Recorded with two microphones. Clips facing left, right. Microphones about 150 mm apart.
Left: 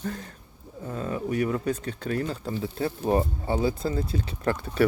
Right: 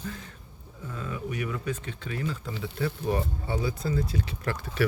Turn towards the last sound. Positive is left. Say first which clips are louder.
# left 5 dB
turn(degrees=30)  # may be behind; listen again after turning